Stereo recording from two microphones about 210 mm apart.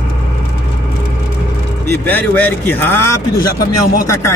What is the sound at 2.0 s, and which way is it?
Speech, 10° left (ahead or behind).